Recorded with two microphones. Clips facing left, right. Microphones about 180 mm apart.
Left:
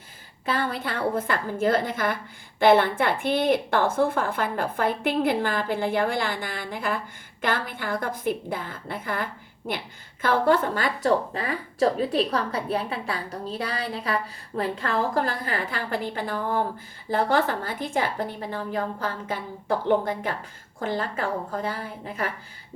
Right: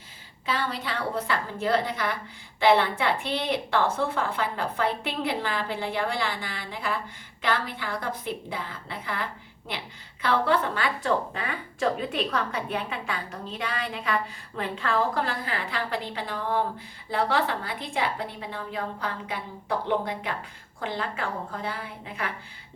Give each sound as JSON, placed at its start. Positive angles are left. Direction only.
{"t": 0.4, "sound": "a woman's voice", "side_deg": 50}